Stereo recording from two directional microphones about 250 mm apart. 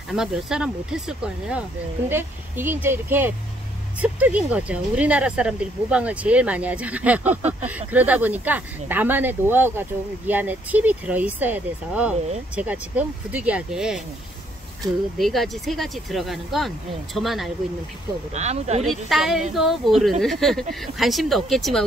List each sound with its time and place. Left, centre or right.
0.1 s speech: centre
15.1 s speech: centre
18.3 s speech: right
18.9 s speech: centre